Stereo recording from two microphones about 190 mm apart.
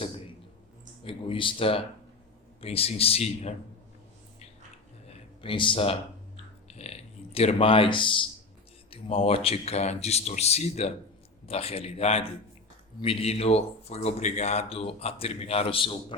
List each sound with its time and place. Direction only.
1.0 s speech: 25° left (ahead or behind)
5.0 s a sound: 30° left (ahead or behind)
6.7 s speech: 35° left (ahead or behind)